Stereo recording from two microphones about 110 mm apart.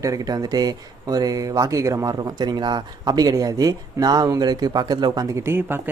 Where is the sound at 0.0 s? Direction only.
35° right (ahead or behind).